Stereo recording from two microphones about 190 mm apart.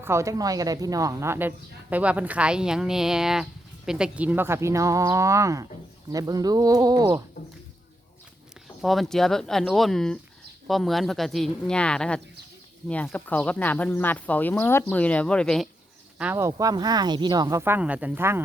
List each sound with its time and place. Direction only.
0.0 s speech: 15° right (ahead or behind)
8.8 s speech: centre (ahead or behind)
16.1 s speech: 10° right (ahead or behind)